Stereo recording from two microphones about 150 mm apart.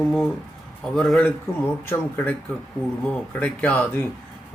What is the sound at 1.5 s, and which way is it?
Speech, 20° left (ahead or behind).